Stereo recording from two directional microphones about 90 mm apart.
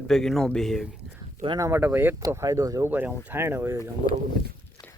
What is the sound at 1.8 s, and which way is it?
Speech, 20° right (ahead or behind).